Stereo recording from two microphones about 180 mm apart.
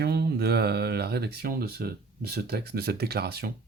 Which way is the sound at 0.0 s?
60° right (ahead or behind).